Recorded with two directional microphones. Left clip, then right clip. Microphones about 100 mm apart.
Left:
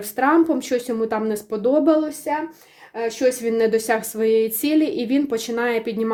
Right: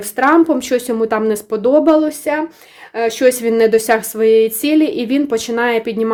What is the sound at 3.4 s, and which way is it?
Speech, 30° right (ahead or behind).